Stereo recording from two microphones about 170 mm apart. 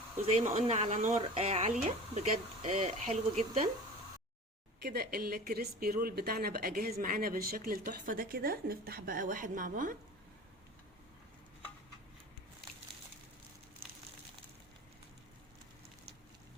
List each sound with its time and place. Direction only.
0.3 s speech: 40° right (ahead or behind)
4.8 s speech: 70° right (ahead or behind); by 10.0 s 55° right (ahead or behind)